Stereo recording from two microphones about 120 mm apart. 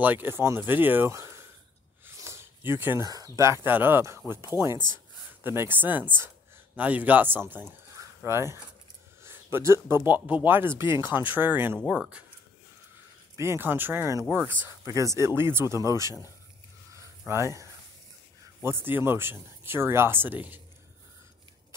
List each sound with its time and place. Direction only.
0.0 s speech: 15° right (ahead or behind)
2.0 s a sound: 20° right (ahead or behind)
3.1 s speech: 25° right (ahead or behind)
5.4 s speech: 20° right (ahead or behind)
8.0 s a sound: 25° right (ahead or behind)
9.2 s speech: 20° right (ahead or behind)
11.8 s speech: 5° right (ahead or behind)
13.4 s speech: 20° right (ahead or behind)
18.6 s speech: 20° right (ahead or behind)